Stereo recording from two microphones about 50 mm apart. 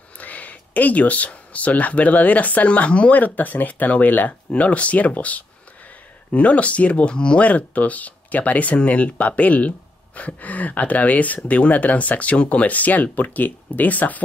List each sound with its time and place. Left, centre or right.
0.2 s speech: left